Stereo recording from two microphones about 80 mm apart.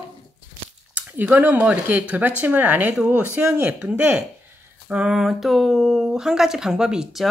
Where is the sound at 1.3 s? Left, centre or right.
Centre.